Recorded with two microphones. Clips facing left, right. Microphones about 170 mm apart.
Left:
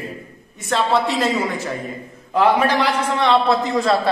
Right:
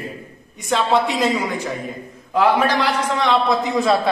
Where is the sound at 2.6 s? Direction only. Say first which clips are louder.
Even; 10° left (ahead or behind).